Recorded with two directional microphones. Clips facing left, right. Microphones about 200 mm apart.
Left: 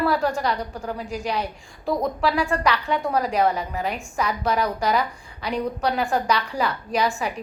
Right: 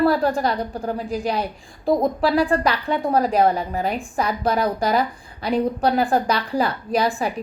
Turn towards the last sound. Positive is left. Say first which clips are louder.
# right 3 dB
turn(degrees=-35)  # may be behind; listen again after turning